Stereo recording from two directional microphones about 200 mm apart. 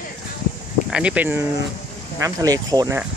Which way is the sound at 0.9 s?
5° right (ahead or behind).